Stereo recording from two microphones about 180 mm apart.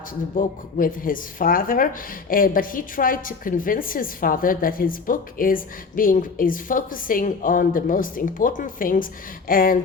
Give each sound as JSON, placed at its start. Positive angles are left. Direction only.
{"t": 0.3, "sound": "a woman's voice", "side_deg": 50}